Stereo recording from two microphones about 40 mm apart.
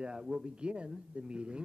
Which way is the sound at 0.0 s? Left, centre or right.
Right.